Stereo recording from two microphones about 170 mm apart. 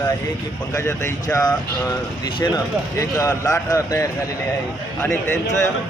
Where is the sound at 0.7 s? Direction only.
20° left (ahead or behind).